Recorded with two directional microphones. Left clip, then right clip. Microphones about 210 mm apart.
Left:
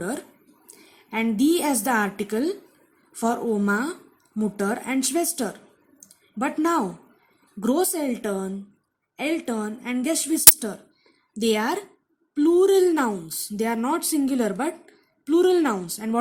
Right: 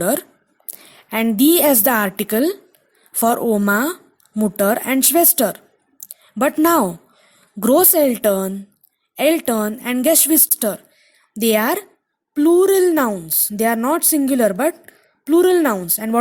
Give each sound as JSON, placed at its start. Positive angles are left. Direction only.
{"t": 0.0, "sound": "a woman's voice", "side_deg": -45}
{"t": 6.1, "sound": "a sound", "side_deg": -45}
{"t": 7.6, "sound": "a woman's voice", "side_deg": -45}